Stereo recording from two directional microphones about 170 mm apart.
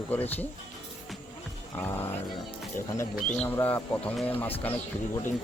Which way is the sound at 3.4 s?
10° left (ahead or behind).